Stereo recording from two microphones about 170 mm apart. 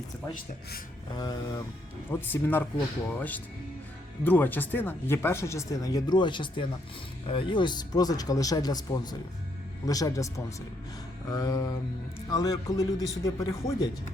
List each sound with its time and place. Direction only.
1.1 s speech: 25° left (ahead or behind)
2.0 s speech: 10° left (ahead or behind)